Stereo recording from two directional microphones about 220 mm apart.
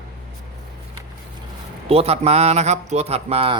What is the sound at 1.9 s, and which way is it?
Speech, 25° right (ahead or behind).